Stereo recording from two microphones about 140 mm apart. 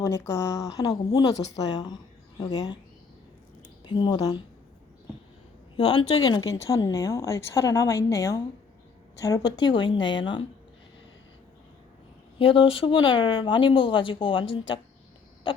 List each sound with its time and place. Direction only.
0.0 s a woman's voice: 20° left (ahead or behind)
3.8 s speech: 30° left (ahead or behind)
5.7 s speech: 40° left (ahead or behind)
6.2 s a woman's voice: 25° left (ahead or behind)
12.4 s speech: 40° left (ahead or behind)